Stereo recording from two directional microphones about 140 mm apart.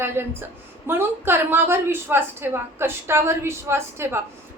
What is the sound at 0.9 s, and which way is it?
A woman's voice, 15° right (ahead or behind).